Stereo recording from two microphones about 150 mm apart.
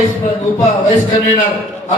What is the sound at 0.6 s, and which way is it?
Music, 55° left (ahead or behind).